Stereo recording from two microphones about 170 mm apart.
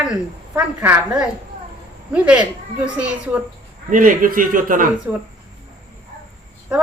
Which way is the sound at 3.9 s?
55° right (ahead or behind).